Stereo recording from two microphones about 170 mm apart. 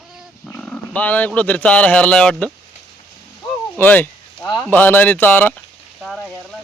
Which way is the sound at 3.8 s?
10° left (ahead or behind).